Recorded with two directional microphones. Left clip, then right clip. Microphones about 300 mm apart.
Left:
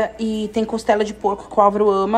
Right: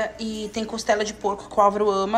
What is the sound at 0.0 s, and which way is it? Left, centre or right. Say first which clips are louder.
A woman's voice: left 6 dB; centre.